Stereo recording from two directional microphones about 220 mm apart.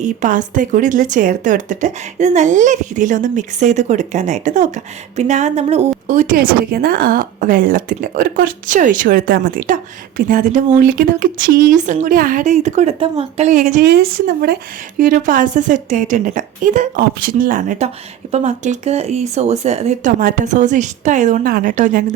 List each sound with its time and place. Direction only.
0.0 s a woman's voice: 35° right (ahead or behind)
13.8 s a woman's voice: 45° right (ahead or behind)